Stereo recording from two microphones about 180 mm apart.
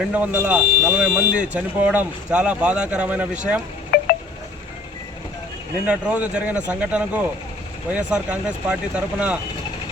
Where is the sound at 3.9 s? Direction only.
60° left (ahead or behind).